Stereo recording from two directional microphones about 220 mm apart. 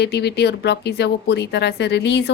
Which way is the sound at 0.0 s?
50° left (ahead or behind).